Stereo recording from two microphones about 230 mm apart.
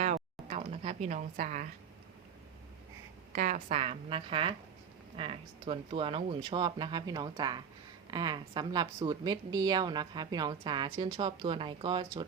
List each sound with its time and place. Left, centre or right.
0.0 s speech: right
3.3 s a woman's voice: right